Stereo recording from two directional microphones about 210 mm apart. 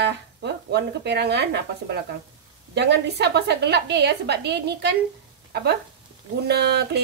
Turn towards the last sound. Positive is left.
turn(degrees=-50)  # may be behind; listen again after turning